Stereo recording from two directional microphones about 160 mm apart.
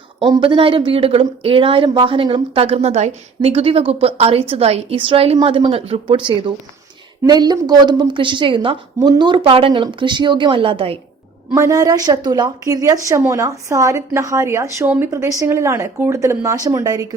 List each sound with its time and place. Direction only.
0.2 s a woman's voice: 30° right (ahead or behind)
11.5 s a woman's voice: 20° right (ahead or behind)